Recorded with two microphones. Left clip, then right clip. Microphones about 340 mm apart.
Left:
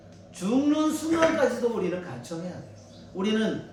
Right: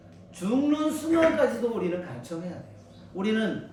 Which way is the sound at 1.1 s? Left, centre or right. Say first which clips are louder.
Right 1 dB; left.